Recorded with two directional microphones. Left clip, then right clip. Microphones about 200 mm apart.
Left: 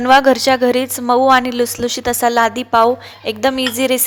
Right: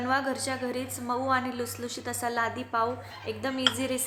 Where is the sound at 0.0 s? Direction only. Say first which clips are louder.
Left 18 dB; 45° left (ahead or behind).